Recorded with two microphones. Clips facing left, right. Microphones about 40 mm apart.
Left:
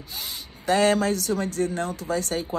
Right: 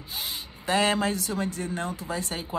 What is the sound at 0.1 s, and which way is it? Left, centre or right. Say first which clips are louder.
Speech: right 2 dB; right.